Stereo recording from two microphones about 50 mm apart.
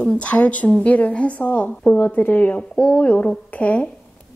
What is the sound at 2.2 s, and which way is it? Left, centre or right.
Speech, left.